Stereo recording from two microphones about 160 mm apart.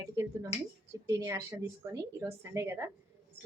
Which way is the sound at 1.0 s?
20° right (ahead or behind).